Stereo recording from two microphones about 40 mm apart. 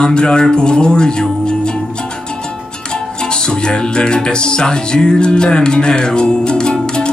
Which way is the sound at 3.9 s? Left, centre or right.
Left.